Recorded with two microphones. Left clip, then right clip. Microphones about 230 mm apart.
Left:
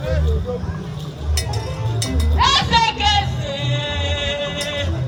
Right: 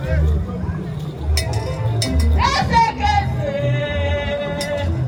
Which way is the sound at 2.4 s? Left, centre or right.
Centre.